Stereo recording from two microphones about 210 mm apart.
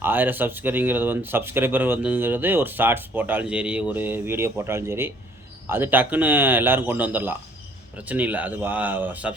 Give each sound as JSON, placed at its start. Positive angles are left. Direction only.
{"t": 0.0, "sound": "speech", "side_deg": -10}